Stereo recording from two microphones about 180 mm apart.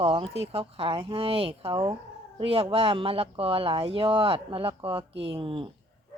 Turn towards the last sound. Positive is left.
turn(degrees=-30)  # may be behind; listen again after turning